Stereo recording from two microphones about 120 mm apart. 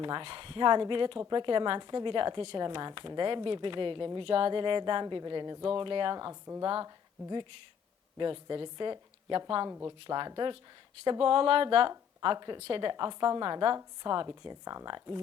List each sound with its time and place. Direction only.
0.0 s a woman's voice: 45° right (ahead or behind)
9.6 s speech: 20° right (ahead or behind)
10.1 s a woman's voice: 40° right (ahead or behind)
12.5 s a woman's voice: 50° right (ahead or behind)